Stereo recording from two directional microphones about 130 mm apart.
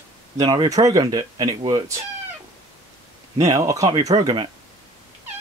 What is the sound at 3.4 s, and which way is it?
Speech, 25° right (ahead or behind).